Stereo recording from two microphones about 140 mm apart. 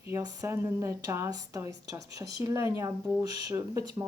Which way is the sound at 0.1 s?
20° right (ahead or behind).